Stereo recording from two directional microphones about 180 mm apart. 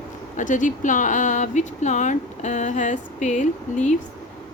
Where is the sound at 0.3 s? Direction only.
45° left (ahead or behind).